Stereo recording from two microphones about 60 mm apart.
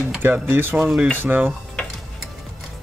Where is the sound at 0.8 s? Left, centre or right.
Centre.